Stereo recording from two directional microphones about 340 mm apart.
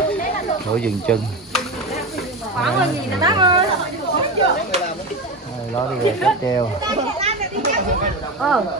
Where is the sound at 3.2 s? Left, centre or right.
Centre.